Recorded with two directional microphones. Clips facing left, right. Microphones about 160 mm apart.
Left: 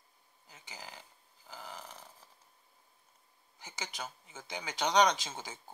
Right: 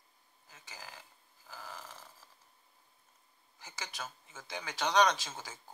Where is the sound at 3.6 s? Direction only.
20° left (ahead or behind).